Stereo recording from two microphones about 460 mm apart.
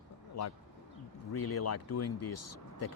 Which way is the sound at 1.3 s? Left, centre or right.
Left.